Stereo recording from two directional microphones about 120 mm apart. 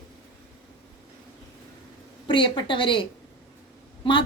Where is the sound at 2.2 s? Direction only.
45° left (ahead or behind).